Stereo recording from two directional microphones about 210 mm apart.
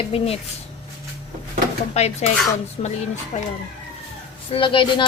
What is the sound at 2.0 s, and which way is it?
Speech, 30° left (ahead or behind).